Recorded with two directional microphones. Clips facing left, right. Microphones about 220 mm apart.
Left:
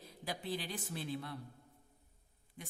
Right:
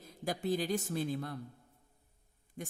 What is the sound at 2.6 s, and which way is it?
Speech, 45° right (ahead or behind).